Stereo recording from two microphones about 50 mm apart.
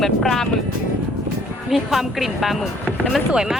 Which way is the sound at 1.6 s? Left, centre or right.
Centre.